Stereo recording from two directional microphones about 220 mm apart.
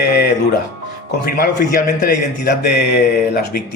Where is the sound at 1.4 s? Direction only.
40° left (ahead or behind).